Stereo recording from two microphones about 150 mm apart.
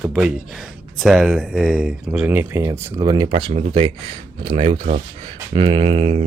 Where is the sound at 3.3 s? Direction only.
40° right (ahead or behind).